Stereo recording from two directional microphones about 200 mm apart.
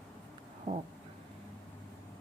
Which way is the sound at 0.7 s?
35° right (ahead or behind).